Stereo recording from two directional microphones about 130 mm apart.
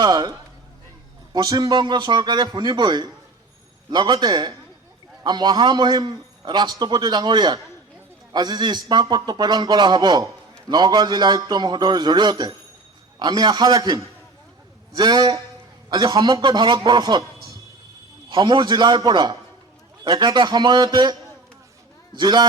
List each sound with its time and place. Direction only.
0.0 s a sound: 35° right (ahead or behind)
1.3 s a man's voice: 30° right (ahead or behind)
18.3 s a man's voice: 35° right (ahead or behind)